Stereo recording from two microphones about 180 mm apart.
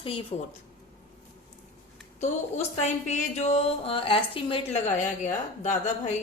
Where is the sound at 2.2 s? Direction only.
40° left (ahead or behind).